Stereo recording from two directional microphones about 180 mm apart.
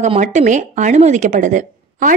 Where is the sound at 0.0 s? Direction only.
40° right (ahead or behind).